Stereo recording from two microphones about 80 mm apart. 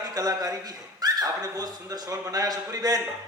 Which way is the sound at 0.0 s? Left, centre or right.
Right.